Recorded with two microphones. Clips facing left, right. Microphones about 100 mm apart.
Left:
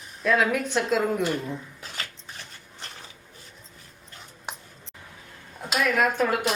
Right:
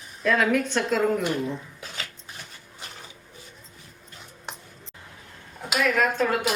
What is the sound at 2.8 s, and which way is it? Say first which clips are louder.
Printer: even; 10° right (ahead or behind).